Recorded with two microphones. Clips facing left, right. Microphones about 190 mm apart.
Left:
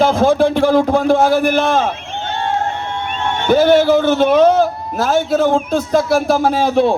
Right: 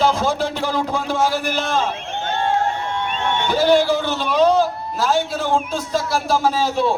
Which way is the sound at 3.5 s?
55° left (ahead or behind).